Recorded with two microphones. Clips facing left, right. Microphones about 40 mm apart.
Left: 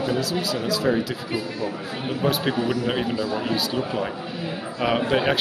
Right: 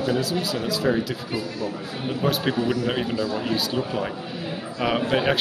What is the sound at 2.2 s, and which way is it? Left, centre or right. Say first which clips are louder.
A man's voice: even; centre.